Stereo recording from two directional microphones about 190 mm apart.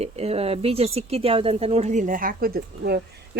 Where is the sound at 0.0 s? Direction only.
35° right (ahead or behind).